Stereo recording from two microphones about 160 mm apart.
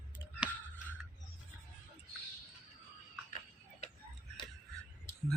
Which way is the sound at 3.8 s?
45° left (ahead or behind).